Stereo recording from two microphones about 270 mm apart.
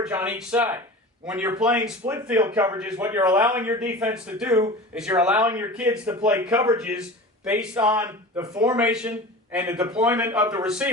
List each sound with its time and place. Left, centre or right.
0.0 s a man's voice: centre